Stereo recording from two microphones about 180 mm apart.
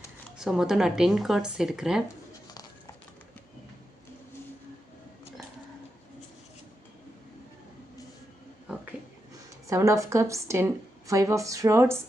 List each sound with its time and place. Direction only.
0.3 s speech: 5° right (ahead or behind)
9.6 s a woman's voice: 15° right (ahead or behind)